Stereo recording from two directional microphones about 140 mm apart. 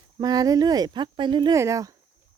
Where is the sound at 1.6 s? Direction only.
20° right (ahead or behind).